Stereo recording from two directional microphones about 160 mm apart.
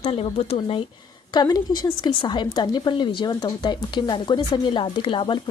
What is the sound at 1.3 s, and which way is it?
A woman's voice, 25° left (ahead or behind).